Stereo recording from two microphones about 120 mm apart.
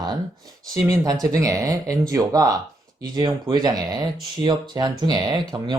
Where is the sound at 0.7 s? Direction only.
30° right (ahead or behind).